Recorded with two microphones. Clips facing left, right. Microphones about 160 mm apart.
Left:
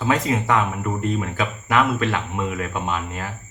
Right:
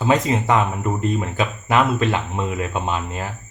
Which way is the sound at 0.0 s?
20° right (ahead or behind).